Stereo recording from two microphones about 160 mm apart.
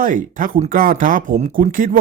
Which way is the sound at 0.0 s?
60° right (ahead or behind).